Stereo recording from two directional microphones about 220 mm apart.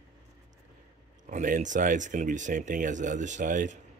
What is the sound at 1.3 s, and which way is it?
Speech, 35° right (ahead or behind).